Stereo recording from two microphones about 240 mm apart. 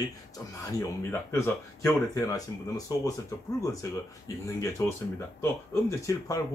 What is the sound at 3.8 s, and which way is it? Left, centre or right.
Speech, centre.